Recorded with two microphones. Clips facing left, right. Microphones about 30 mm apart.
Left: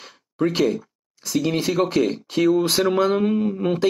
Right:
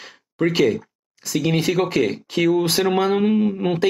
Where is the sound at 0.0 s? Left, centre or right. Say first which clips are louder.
Right 1 dB; right.